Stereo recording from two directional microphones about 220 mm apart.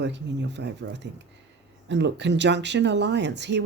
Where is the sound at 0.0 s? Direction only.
50° right (ahead or behind).